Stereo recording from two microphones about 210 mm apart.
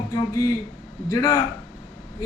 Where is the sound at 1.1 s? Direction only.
15° left (ahead or behind).